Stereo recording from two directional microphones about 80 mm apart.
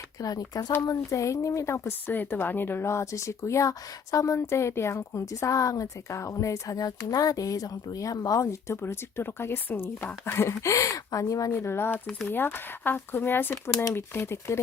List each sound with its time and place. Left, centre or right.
0.2 s a woman's voice: left
8.6 s a woman's voice: left
11.5 s a woman's voice: left